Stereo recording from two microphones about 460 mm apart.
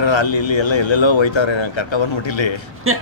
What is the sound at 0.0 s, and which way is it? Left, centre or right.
Speech, left.